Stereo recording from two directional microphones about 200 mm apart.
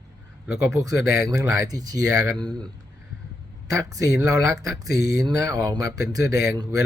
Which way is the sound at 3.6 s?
15° right (ahead or behind).